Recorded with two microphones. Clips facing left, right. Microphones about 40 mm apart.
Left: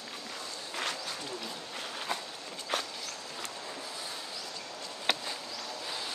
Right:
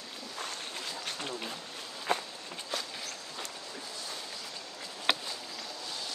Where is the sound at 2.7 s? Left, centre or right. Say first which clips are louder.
Left 4 dB; left.